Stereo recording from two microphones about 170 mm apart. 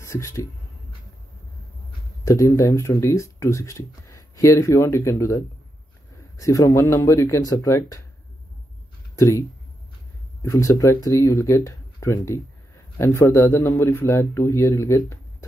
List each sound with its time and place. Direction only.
0.0 s speech: 15° left (ahead or behind)
2.2 s speech: 20° left (ahead or behind)
9.1 s speech: 20° left (ahead or behind)
10.4 s speech: 20° left (ahead or behind)